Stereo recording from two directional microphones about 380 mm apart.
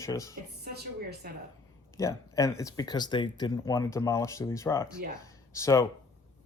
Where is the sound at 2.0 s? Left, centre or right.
Centre.